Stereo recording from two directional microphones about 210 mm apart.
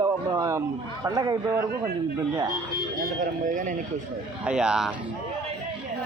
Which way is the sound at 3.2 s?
40° right (ahead or behind).